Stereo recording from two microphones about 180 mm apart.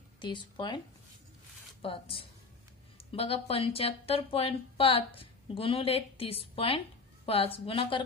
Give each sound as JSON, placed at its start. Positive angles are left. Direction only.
{"t": 0.2, "sound": "speech", "side_deg": 25}
{"t": 1.8, "sound": "speech", "side_deg": 30}